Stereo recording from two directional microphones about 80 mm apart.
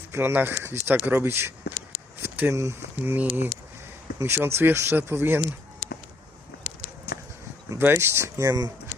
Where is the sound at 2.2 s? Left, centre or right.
Right.